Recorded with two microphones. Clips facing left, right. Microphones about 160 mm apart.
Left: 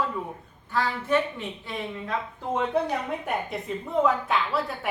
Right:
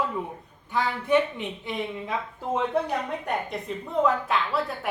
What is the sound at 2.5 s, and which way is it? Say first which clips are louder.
A woman's voice: even; centre (ahead or behind).